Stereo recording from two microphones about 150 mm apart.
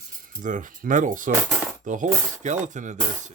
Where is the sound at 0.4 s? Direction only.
60° right (ahead or behind).